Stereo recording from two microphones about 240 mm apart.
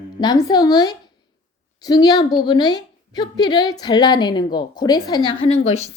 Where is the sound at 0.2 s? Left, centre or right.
Centre.